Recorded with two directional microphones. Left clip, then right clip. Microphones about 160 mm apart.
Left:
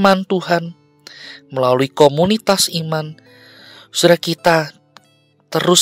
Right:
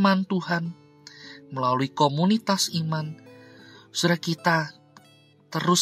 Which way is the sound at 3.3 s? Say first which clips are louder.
Left 7 dB; 50° left (ahead or behind).